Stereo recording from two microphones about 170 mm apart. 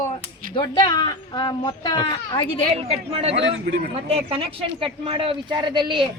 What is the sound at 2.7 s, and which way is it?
Speech, 35° right (ahead or behind).